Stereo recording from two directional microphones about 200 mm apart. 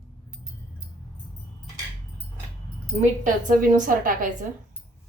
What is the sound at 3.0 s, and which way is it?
A woman's voice, 40° right (ahead or behind).